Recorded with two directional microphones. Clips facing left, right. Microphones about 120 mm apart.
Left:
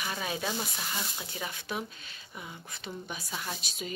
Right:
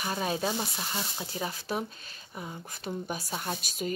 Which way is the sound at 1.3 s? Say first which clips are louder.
Right 4 dB; 35° right (ahead or behind).